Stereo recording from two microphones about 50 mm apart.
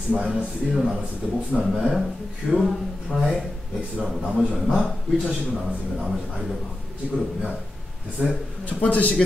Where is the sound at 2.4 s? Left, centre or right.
Left.